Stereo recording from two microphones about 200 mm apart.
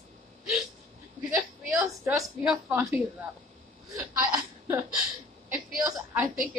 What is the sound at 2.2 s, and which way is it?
Speech, 5° right (ahead or behind).